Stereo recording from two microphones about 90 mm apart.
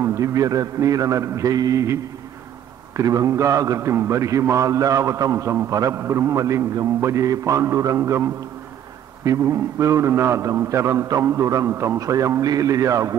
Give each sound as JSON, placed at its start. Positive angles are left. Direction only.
{"t": 0.0, "sound": "a man's voice", "side_deg": -35}
{"t": 3.0, "sound": "a man's voice", "side_deg": -40}